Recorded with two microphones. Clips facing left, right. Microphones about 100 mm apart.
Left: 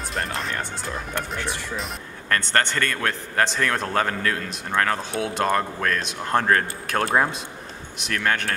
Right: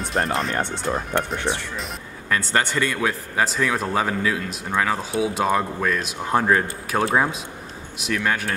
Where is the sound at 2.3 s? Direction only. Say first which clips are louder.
Even; 5° right (ahead or behind).